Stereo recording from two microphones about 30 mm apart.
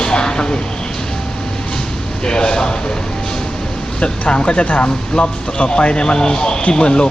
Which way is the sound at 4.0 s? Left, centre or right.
Left.